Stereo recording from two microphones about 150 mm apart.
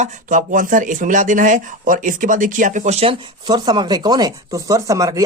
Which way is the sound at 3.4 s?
25° right (ahead or behind).